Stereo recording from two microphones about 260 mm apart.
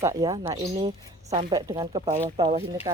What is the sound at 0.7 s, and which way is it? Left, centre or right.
Speech, right.